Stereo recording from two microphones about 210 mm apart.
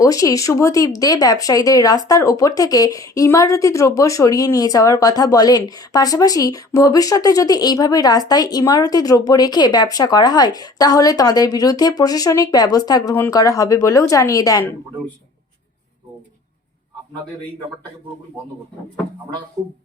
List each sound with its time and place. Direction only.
0.0 s speech: 15° left (ahead or behind)